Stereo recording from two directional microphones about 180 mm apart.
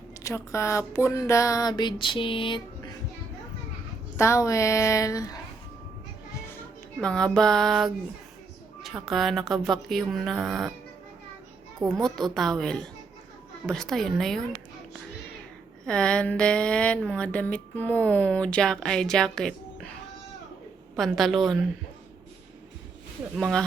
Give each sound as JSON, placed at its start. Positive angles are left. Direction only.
{"t": 0.2, "sound": "speech", "side_deg": 15}
{"t": 4.2, "sound": "speech", "side_deg": 15}
{"t": 7.0, "sound": "speech", "side_deg": 5}
{"t": 11.9, "sound": "speech", "side_deg": 0}
{"t": 15.9, "sound": "speech", "side_deg": 5}
{"t": 20.9, "sound": "speech", "side_deg": 0}
{"t": 23.4, "sound": "speech", "side_deg": 5}